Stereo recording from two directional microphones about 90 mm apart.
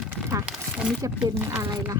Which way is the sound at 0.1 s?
30° right (ahead or behind).